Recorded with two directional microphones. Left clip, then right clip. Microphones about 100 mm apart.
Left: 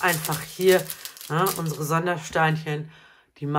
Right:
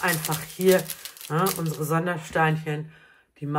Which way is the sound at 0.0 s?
10° left (ahead or behind).